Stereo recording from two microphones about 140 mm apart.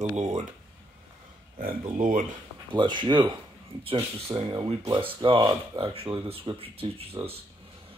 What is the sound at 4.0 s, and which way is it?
Speech, 25° right (ahead or behind).